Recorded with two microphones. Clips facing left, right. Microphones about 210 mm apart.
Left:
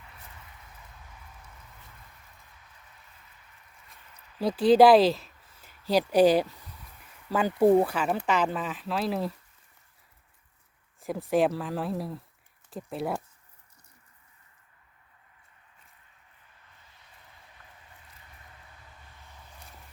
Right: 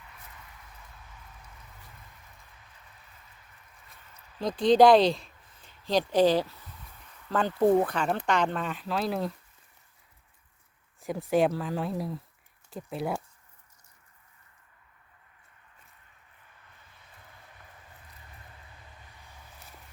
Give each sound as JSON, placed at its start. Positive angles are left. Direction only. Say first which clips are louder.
{"t": 4.4, "sound": "speech", "louder": "left 1 dB", "side_deg": 5}
{"t": 11.0, "sound": "speech", "louder": "even", "side_deg": 0}